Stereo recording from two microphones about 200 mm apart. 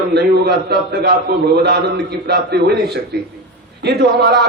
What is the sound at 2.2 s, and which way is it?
Speech, 55° right (ahead or behind).